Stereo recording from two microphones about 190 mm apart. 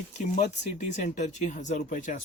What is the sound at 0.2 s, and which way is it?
Speech, 40° left (ahead or behind).